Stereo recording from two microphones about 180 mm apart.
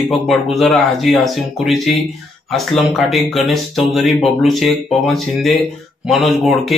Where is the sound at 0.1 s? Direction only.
Centre (ahead or behind).